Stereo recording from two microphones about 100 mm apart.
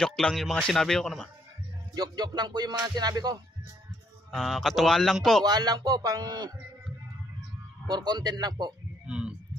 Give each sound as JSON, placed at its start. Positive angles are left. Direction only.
{"t": 0.0, "sound": "a man's voice", "side_deg": 5}
{"t": 2.0, "sound": "music", "side_deg": -45}
{"t": 4.3, "sound": "a man's voice", "side_deg": 5}
{"t": 5.4, "sound": "speech", "side_deg": -40}
{"t": 7.9, "sound": "music", "side_deg": -45}
{"t": 9.0, "sound": "a sound", "side_deg": -10}